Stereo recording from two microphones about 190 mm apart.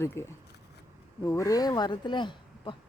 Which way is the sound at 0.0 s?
15° left (ahead or behind).